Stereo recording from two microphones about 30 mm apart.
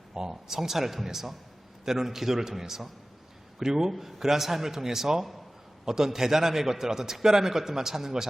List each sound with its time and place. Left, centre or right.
0.1 s a man's voice: centre